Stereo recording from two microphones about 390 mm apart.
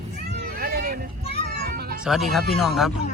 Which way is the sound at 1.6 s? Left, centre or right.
Right.